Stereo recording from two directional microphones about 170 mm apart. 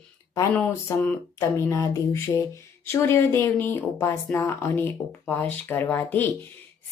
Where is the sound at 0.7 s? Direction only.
15° left (ahead or behind).